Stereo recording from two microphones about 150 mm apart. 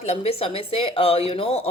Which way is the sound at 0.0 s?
45° left (ahead or behind).